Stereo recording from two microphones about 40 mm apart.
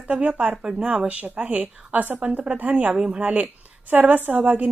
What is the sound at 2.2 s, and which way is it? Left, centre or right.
Speech, right.